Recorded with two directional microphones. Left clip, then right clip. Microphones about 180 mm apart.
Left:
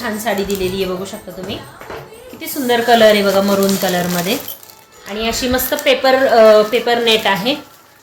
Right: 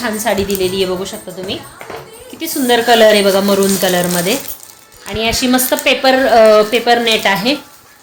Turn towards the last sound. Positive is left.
turn(degrees=-40)  # may be behind; listen again after turning